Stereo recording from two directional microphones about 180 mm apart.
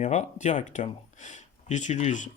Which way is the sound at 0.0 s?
40° left (ahead or behind).